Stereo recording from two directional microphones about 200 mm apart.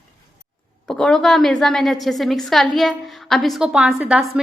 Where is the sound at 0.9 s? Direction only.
5° left (ahead or behind).